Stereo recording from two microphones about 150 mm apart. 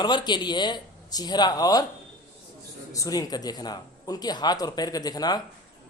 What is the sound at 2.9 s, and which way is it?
Speech, 25° left (ahead or behind).